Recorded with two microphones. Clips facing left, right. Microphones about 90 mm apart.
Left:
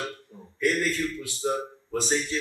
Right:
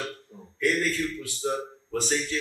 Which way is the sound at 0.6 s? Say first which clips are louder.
Even; 20° left (ahead or behind).